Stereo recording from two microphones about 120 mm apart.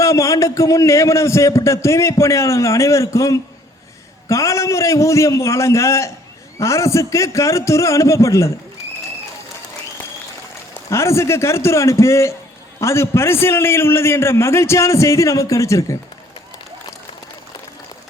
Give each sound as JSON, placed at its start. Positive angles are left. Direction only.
{"t": 0.0, "sound": "a man's voice", "side_deg": 25}
{"t": 10.8, "sound": "a man's voice", "side_deg": 25}